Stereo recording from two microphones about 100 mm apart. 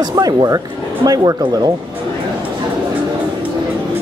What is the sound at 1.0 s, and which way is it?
Speech, 40° right (ahead or behind).